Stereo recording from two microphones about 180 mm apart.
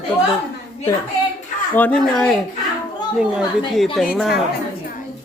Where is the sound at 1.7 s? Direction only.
5° left (ahead or behind).